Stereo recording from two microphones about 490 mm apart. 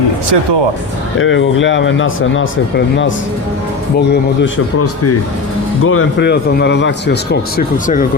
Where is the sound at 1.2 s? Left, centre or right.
Left.